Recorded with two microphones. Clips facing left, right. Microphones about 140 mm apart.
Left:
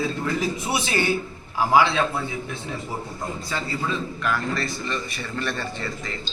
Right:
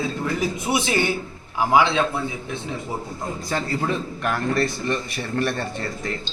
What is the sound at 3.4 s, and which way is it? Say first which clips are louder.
A man's voice: right 5 dB; 45° right (ahead or behind).